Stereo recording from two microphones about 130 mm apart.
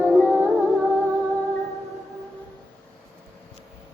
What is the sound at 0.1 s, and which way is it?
Music, 10° left (ahead or behind).